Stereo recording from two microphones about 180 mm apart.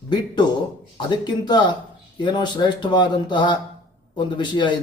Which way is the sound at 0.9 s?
25° left (ahead or behind).